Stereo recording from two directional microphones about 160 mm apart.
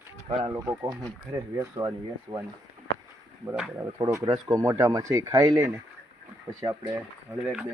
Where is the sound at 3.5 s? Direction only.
5° right (ahead or behind).